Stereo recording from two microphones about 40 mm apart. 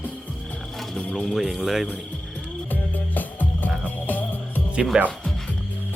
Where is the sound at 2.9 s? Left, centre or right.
Left.